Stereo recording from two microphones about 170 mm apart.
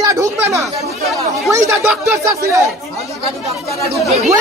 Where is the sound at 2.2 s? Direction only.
20° right (ahead or behind).